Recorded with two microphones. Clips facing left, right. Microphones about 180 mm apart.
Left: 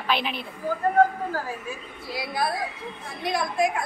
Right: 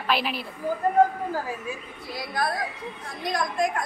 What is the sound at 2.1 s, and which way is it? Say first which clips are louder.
A woman's voice: left 1 dB; 10° left (ahead or behind).